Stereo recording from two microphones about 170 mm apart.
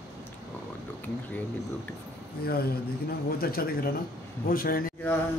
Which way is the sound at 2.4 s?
65° left (ahead or behind).